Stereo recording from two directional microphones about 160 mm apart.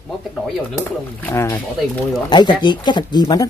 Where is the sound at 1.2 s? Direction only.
15° left (ahead or behind).